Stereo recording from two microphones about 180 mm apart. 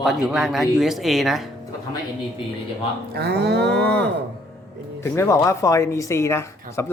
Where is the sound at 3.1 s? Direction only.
65° right (ahead or behind).